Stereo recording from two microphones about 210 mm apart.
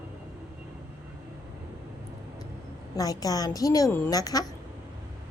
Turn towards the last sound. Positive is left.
turn(degrees=15)  # may be behind; listen again after turning